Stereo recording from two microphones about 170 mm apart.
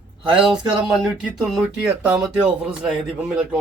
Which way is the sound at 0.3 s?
25° right (ahead or behind).